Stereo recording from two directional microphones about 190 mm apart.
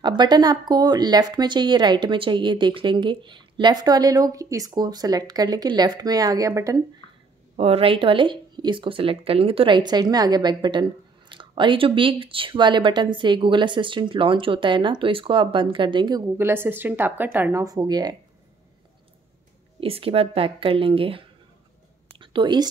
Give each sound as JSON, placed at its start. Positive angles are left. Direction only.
{"t": 0.0, "sound": "speech", "side_deg": -25}
{"t": 7.5, "sound": "speech", "side_deg": -30}
{"t": 19.8, "sound": "a woman's voice", "side_deg": -30}